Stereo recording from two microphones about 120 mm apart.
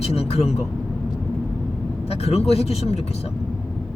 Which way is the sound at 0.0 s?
60° left (ahead or behind).